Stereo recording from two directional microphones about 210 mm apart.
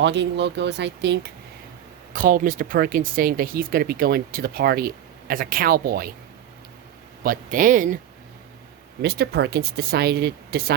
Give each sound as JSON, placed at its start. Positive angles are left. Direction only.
{"t": 0.0, "sound": "speech", "side_deg": -55}
{"t": 2.1, "sound": "speech", "side_deg": -40}
{"t": 7.2, "sound": "speech", "side_deg": -40}
{"t": 9.0, "sound": "speech", "side_deg": -50}